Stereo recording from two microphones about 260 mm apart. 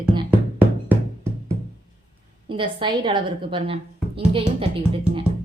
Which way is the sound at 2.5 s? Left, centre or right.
Centre.